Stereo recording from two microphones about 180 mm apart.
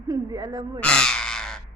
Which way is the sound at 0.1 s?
20° right (ahead or behind).